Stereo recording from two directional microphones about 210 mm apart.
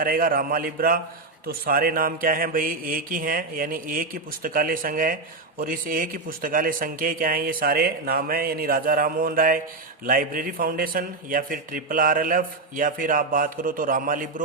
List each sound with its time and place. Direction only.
0.0 s a man's voice: 45° right (ahead or behind)